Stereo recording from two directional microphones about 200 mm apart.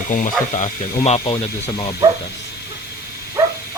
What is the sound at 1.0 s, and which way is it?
Speech, 30° left (ahead or behind).